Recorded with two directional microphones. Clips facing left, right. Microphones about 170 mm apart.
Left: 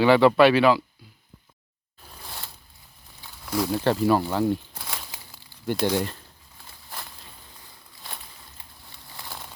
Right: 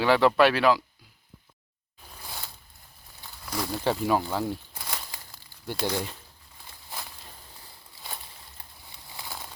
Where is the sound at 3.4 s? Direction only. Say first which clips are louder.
Left 7 dB; 5° left (ahead or behind).